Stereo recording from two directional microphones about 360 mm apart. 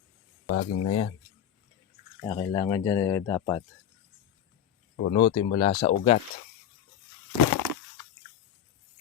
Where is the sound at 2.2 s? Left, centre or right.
Centre.